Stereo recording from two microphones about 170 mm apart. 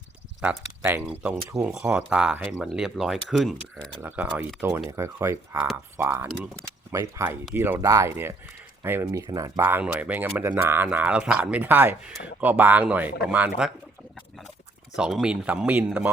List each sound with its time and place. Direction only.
0.4 s speech: 15° right (ahead or behind); by 4.0 s 5° left (ahead or behind)
4.0 s speech: 10° right (ahead or behind)
14.9 s speech: 5° right (ahead or behind)